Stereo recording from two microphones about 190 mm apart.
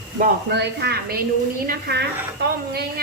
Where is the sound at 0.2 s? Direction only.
60° right (ahead or behind).